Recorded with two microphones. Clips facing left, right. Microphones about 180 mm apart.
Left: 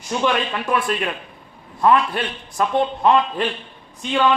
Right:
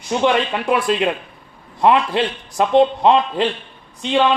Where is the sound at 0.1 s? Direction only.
25° right (ahead or behind).